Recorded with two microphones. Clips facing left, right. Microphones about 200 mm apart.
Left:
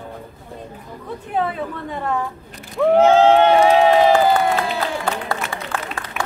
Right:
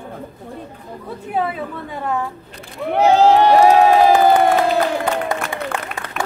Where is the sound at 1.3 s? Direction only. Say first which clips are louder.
Right 1 dB; 5° right (ahead or behind).